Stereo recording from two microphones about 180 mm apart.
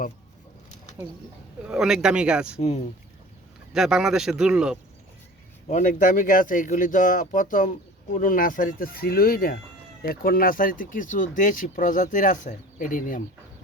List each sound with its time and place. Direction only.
1.7 s speech: 5° right (ahead or behind)
2.6 s speech: 40° left (ahead or behind)
3.7 s speech: centre (ahead or behind)
5.6 s speech: 45° left (ahead or behind)